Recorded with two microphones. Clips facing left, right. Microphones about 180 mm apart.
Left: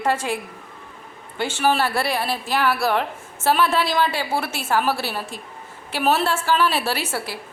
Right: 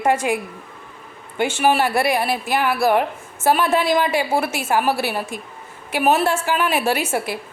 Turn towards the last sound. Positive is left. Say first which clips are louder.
# right 5 dB
turn(degrees=-15)  # may be behind; listen again after turning